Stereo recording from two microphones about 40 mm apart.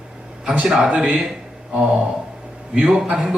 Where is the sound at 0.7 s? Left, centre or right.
Centre.